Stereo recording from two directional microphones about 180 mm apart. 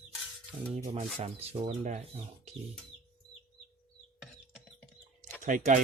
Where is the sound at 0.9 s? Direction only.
40° right (ahead or behind).